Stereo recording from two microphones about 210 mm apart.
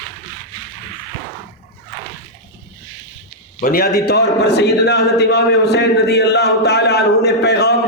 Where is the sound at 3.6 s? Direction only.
45° left (ahead or behind).